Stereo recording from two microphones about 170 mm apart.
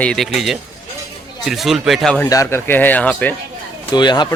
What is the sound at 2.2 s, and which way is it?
A man's voice, 15° left (ahead or behind).